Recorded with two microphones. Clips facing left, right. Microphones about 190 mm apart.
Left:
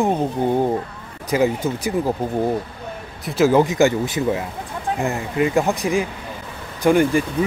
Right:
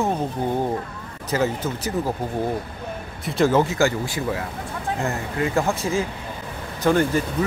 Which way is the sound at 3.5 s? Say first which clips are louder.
Left 4 dB; 15° left (ahead or behind).